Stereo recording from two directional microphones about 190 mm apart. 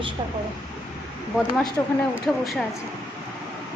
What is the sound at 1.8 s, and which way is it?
Speech, 10° left (ahead or behind).